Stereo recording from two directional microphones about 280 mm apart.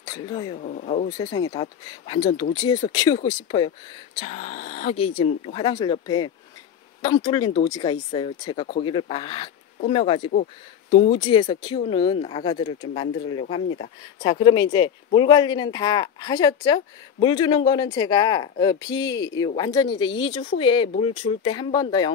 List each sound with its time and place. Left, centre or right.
0.0 s speech: centre
0.6 s speech: left
1.1 s speech: centre